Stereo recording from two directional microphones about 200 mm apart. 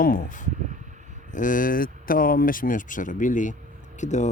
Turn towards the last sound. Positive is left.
turn(degrees=35)  # may be behind; listen again after turning